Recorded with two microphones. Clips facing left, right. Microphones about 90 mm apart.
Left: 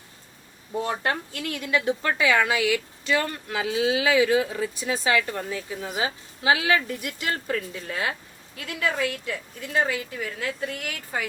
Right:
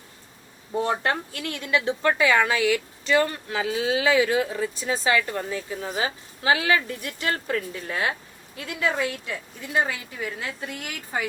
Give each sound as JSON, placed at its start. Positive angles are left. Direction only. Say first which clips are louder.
{"t": 0.8, "sound": "a woman's voice", "louder": "right 2 dB", "side_deg": -30}
{"t": 8.5, "sound": "a woman's voice", "louder": "right 1 dB", "side_deg": -25}